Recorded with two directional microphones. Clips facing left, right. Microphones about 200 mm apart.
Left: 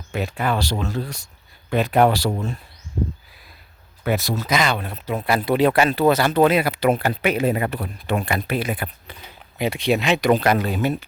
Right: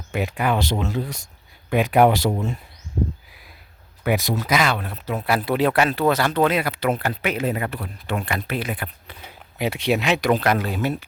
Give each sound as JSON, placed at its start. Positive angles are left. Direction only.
{"t": 0.2, "sound": "speech", "side_deg": -15}
{"t": 4.1, "sound": "speech", "side_deg": -15}
{"t": 9.6, "sound": "speech", "side_deg": -10}